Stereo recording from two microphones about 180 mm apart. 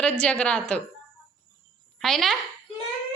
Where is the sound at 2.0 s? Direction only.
Centre (ahead or behind).